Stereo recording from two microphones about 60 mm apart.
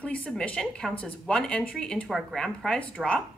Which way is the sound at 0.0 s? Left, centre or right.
Left.